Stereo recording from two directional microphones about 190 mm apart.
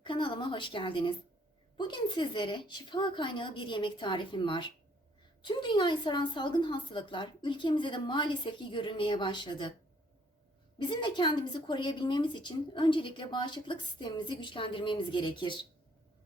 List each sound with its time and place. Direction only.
0.0 s a woman's voice: 25° left (ahead or behind)
10.8 s a woman's voice: 25° left (ahead or behind)